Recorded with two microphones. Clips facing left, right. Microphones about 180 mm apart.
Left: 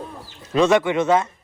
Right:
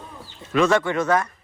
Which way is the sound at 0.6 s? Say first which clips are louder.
Left 4 dB; 15° left (ahead or behind).